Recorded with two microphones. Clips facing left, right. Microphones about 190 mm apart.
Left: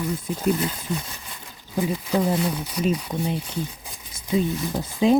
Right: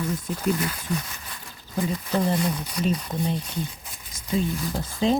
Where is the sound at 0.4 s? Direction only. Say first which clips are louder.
Left 3 dB; 25° left (ahead or behind).